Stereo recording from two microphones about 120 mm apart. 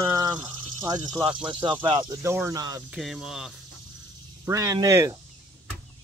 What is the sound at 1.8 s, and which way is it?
Speech, 35° right (ahead or behind).